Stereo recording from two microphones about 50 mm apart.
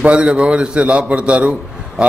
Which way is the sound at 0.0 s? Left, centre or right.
Right.